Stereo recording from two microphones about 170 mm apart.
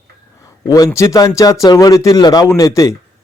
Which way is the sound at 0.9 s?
20° left (ahead or behind).